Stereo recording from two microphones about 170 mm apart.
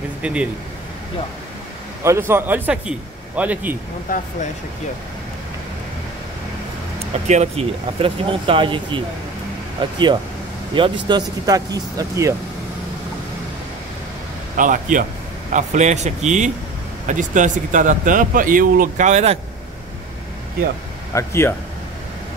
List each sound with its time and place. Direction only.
0.2 s speech: 5° right (ahead or behind)
2.0 s a man's voice: 15° right (ahead or behind)
7.2 s speech: 40° right (ahead or behind); by 12.4 s 20° right (ahead or behind)
14.6 s speech: 50° right (ahead or behind)
21.1 s speech: 15° left (ahead or behind)